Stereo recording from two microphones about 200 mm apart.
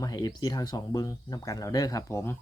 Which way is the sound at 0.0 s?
20° left (ahead or behind).